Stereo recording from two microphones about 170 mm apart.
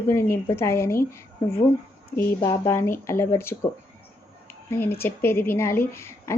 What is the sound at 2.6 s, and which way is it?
Speech, 15° left (ahead or behind).